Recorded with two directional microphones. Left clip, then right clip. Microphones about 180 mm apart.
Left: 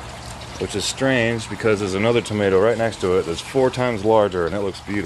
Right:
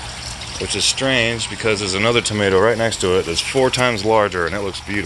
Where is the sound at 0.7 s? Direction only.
40° left (ahead or behind).